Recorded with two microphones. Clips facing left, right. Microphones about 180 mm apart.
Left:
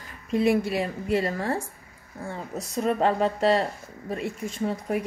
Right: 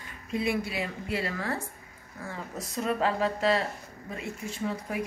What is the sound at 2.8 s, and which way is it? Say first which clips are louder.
Speech: left 4 dB; 35° left (ahead or behind).